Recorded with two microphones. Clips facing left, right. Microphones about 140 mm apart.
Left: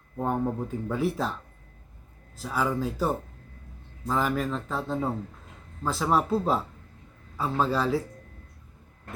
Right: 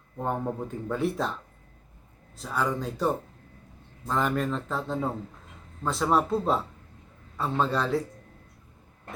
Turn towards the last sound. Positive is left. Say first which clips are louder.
# left 1 dB
turn(degrees=5)  # may be behind; listen again after turning